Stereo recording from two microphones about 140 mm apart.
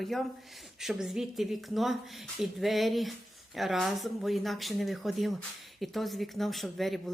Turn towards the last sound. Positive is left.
turn(degrees=0)  # may be behind; listen again after turning